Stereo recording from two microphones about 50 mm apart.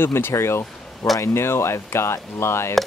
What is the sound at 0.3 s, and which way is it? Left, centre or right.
Speech, left.